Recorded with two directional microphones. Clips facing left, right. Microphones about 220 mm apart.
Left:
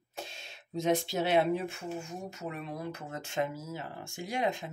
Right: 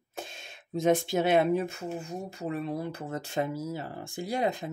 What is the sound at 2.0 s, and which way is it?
Speech, 35° right (ahead or behind).